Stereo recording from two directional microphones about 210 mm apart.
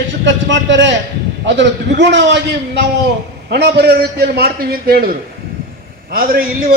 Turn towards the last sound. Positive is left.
turn(degrees=-45)  # may be behind; listen again after turning